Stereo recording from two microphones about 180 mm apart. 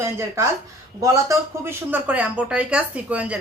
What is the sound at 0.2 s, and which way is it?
A woman's voice, 15° right (ahead or behind).